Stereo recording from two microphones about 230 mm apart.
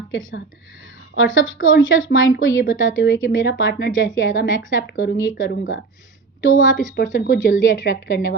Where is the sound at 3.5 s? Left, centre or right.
Left.